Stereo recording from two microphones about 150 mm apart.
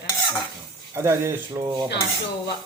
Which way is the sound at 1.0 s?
15° right (ahead or behind).